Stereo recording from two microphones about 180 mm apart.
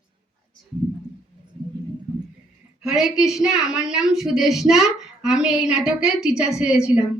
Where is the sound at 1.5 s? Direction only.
35° right (ahead or behind).